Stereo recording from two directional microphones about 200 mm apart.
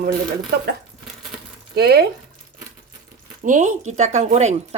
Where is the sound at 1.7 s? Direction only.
50° right (ahead or behind).